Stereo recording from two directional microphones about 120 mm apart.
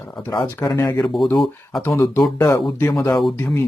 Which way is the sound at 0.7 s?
30° left (ahead or behind).